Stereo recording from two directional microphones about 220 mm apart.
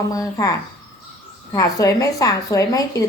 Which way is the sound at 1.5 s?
15° left (ahead or behind).